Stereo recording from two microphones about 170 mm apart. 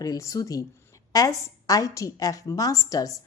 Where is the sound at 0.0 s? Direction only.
20° left (ahead or behind).